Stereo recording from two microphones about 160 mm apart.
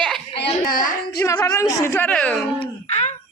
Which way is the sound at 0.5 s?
60° left (ahead or behind).